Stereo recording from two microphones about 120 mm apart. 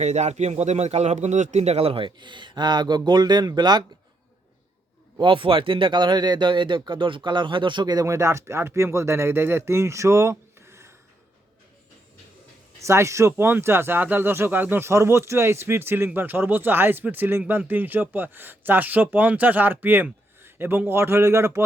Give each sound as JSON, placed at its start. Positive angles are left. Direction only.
{"t": 0.0, "sound": "speech", "side_deg": -70}
{"t": 5.2, "sound": "speech", "side_deg": -45}
{"t": 12.8, "sound": "speech", "side_deg": -25}